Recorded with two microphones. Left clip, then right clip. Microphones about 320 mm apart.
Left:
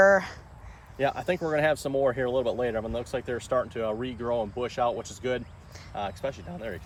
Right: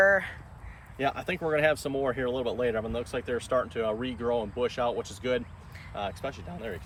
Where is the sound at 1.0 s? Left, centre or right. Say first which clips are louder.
Left 3 dB; left.